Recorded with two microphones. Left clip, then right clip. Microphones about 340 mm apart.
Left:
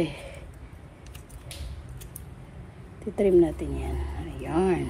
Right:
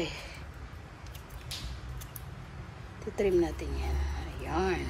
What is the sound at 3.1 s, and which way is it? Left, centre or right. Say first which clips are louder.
Speech: left 7 dB; centre.